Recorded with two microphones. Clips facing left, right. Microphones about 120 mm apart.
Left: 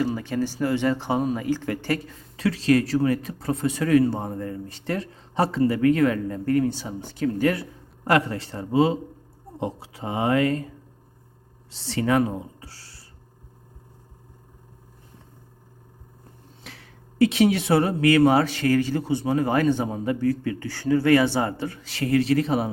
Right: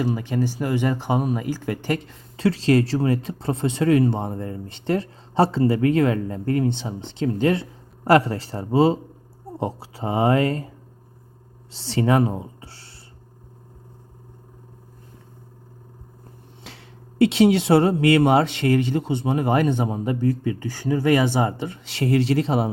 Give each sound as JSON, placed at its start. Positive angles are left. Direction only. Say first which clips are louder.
{"t": 0.0, "sound": "speech", "louder": "right 1 dB", "side_deg": -15}
{"t": 2.3, "sound": "speech", "louder": "right 2 dB", "side_deg": -30}
{"t": 11.7, "sound": "speech", "louder": "right 2 dB", "side_deg": -30}
{"t": 16.6, "sound": "speech", "louder": "right 2 dB", "side_deg": -30}